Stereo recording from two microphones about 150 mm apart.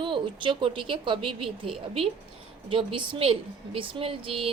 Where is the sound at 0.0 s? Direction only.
35° right (ahead or behind).